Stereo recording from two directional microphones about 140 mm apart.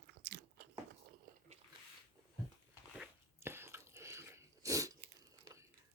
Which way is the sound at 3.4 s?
15° right (ahead or behind).